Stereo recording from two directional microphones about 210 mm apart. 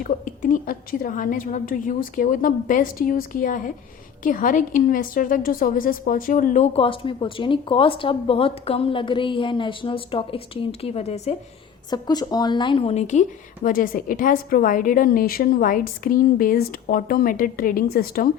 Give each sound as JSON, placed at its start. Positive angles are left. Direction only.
{"t": 0.0, "sound": "a woman's voice", "side_deg": 40}
{"t": 11.9, "sound": "a woman's voice", "side_deg": 20}